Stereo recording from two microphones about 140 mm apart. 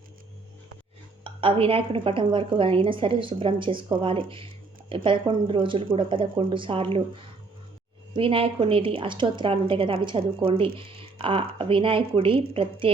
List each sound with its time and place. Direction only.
1.2 s a woman's voice: 40° right (ahead or behind)
8.1 s a woman's voice: 40° right (ahead or behind)